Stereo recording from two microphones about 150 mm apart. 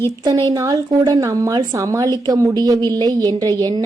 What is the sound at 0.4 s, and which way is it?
Speech, 20° right (ahead or behind).